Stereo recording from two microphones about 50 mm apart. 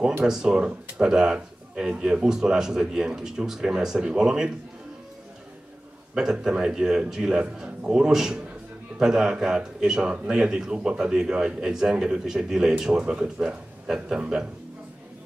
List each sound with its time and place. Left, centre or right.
0.2 s a man's voice: centre
6.1 s a man's voice: centre